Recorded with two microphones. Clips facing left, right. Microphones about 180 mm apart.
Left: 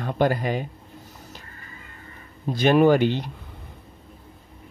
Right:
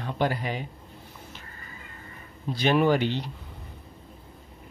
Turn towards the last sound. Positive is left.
turn(degrees=50)  # may be behind; listen again after turning